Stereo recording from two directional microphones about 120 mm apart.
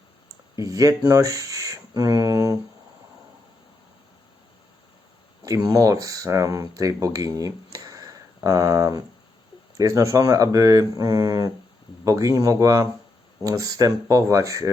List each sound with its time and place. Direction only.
0.5 s speech: 30° right (ahead or behind)
2.0 s a sound: 30° right (ahead or behind)
5.6 s speech: 30° right (ahead or behind)